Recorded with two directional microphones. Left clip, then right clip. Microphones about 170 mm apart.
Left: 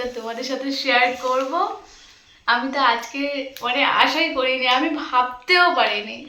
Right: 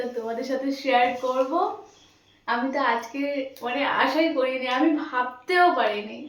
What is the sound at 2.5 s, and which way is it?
A woman's voice, 20° right (ahead or behind).